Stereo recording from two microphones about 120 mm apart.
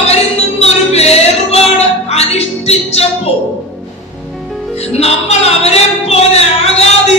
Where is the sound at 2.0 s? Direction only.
60° left (ahead or behind).